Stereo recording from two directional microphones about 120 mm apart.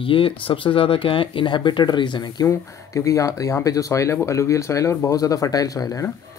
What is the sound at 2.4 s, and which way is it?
Speech, 25° left (ahead or behind).